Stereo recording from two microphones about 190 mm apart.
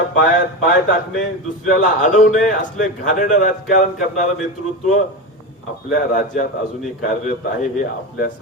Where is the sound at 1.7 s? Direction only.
40° left (ahead or behind).